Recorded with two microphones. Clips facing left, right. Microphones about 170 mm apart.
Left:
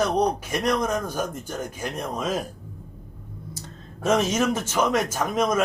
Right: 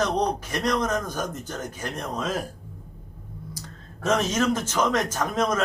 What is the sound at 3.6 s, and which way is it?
Clicking, 25° left (ahead or behind).